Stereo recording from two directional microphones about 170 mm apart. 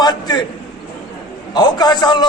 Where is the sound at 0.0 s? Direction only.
25° left (ahead or behind).